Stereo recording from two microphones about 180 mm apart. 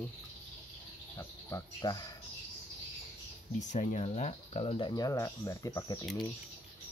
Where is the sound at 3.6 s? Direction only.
40° left (ahead or behind); by 6.0 s 20° left (ahead or behind).